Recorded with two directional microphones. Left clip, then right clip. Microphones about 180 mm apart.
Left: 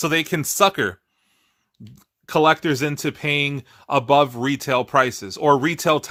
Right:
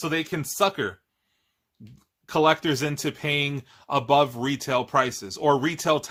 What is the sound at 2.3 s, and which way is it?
Speech, 40° left (ahead or behind).